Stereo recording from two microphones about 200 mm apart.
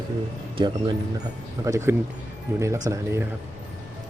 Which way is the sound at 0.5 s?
20° right (ahead or behind).